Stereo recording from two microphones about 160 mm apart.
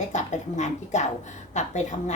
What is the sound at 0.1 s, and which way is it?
A woman's voice, 45° left (ahead or behind).